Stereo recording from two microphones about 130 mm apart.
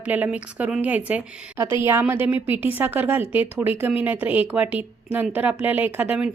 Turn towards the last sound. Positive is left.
turn(degrees=-10)  # may be behind; listen again after turning